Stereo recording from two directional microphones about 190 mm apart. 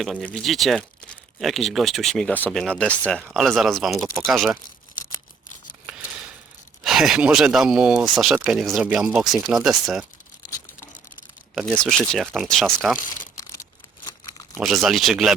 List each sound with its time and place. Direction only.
0.0 s speech: centre (ahead or behind)
6.8 s speech: centre (ahead or behind)
11.6 s speech: 5° left (ahead or behind)
13.4 s a sound: 20° left (ahead or behind)
14.5 s speech: centre (ahead or behind)